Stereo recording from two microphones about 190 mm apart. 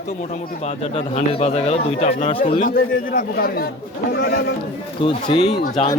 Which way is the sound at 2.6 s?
45° left (ahead or behind).